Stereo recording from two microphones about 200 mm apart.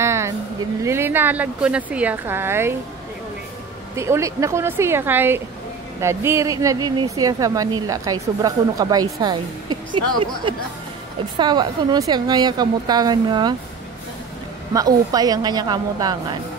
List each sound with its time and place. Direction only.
0.0 s vehicle: 15° right (ahead or behind)
0.8 s speech: 10° right (ahead or behind)
3.9 s a woman's voice: 15° right (ahead or behind)
14.7 s a woman's voice: 20° right (ahead or behind)